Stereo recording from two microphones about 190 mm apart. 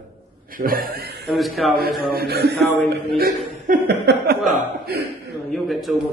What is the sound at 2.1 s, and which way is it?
Speech, 55° right (ahead or behind).